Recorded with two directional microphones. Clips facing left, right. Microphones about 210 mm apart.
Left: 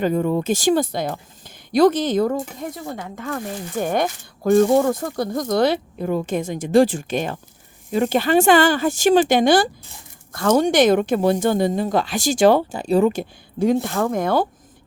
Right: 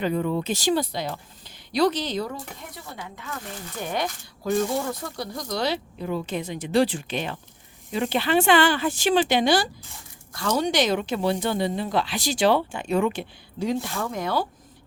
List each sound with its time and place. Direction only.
0.0 s speech: 45° left (ahead or behind)